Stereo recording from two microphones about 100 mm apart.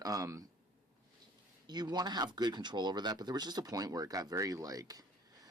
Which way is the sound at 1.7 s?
45° right (ahead or behind).